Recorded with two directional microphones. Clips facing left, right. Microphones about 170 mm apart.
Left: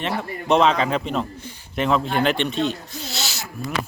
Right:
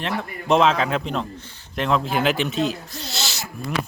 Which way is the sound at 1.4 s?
10° left (ahead or behind).